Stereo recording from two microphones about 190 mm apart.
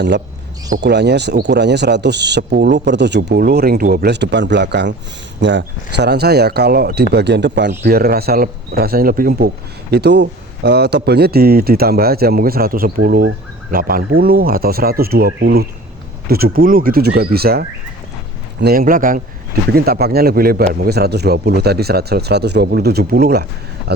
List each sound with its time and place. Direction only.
0.8 s speech: 60° right (ahead or behind)
7.8 s a man's voice: 55° right (ahead or behind)
16.3 s a man's voice: 50° right (ahead or behind)